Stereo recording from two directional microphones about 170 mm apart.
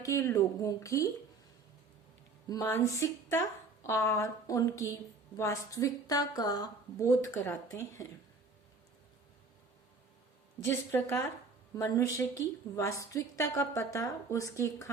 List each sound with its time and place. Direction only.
0.0 s a woman's voice: 15° left (ahead or behind)
2.5 s a woman's voice: 20° left (ahead or behind)
10.6 s a woman's voice: 15° left (ahead or behind)